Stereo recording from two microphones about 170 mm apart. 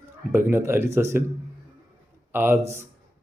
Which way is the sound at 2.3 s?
15° right (ahead or behind).